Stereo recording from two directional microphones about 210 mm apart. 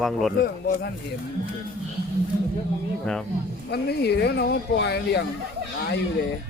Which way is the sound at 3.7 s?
50° left (ahead or behind).